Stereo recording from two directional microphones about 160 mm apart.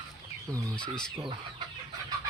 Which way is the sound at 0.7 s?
5° left (ahead or behind).